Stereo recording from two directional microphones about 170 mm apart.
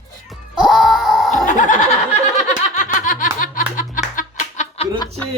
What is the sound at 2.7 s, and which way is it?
Music, 45° left (ahead or behind).